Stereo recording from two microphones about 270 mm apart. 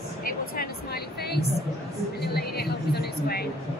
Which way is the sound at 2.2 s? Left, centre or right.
Left.